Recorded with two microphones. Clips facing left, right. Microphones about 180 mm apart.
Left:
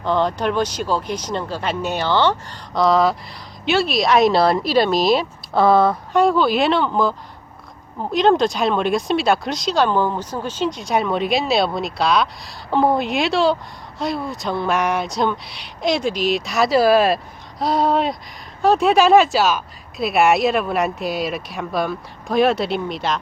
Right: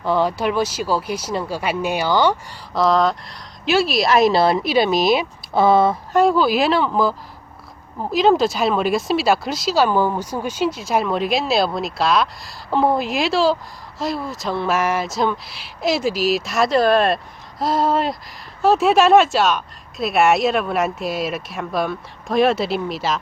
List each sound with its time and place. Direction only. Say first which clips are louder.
0.0 s speech: even; 10° right (ahead or behind)